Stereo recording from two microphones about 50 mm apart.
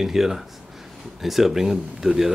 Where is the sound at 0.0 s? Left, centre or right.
Centre.